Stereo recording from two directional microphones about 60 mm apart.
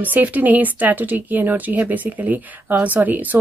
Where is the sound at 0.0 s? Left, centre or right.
Right.